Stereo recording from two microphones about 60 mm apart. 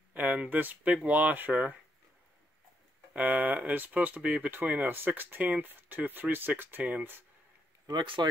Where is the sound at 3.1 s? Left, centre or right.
Right.